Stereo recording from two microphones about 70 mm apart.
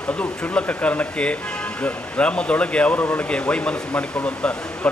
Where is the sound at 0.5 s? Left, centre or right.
Left.